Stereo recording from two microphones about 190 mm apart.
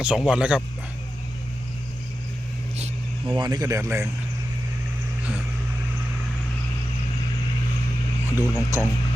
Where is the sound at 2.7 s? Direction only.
35° right (ahead or behind).